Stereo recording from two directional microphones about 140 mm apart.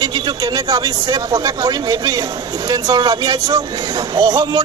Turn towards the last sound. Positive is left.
turn(degrees=-30)  # may be behind; listen again after turning